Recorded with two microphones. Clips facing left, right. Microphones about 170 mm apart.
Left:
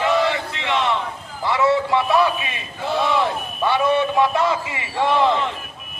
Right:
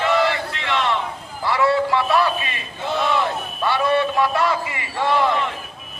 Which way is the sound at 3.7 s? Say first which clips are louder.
Left 1 dB; 20° left (ahead or behind).